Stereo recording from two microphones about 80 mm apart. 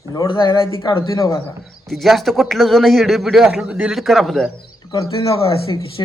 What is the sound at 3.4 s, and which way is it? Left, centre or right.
Speech, centre.